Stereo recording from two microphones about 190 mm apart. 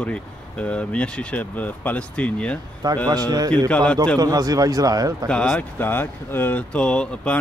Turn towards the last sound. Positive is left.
turn(degrees=5)  # may be behind; listen again after turning